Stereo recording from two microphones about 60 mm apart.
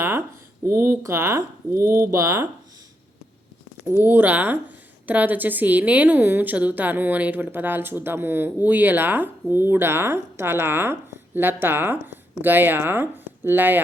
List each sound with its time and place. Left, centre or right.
0.0 s speech: right
2.1 s speech: right
3.8 s a woman's voice: right